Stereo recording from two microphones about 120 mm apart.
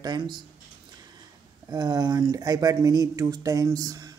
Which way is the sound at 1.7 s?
30° right (ahead or behind).